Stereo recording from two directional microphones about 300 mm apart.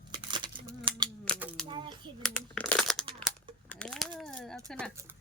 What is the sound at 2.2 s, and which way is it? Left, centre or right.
Crumpling, centre.